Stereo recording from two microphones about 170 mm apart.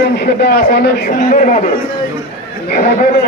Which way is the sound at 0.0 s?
70° left (ahead or behind).